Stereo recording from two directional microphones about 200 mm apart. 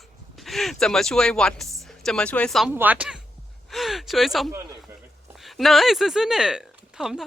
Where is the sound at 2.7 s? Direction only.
10° right (ahead or behind).